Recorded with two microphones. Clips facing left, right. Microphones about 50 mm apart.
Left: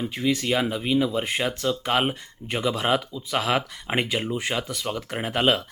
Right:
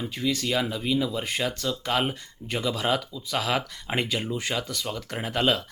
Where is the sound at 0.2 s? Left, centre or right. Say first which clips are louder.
Left 3 dB; left.